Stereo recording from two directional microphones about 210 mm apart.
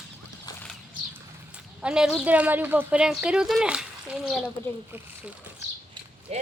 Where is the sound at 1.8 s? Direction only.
5° right (ahead or behind).